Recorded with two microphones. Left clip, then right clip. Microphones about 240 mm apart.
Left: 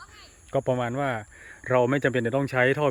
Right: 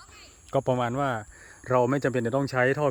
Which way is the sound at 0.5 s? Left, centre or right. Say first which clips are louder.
Even; centre.